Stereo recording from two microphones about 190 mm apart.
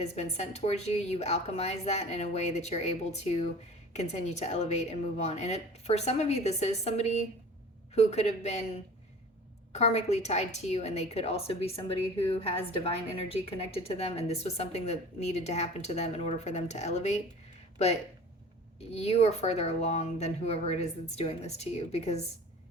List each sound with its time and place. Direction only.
0.0 s a woman's voice: 35° left (ahead or behind)
9.7 s a woman's voice: 35° left (ahead or behind)
18.8 s a woman's voice: 30° left (ahead or behind)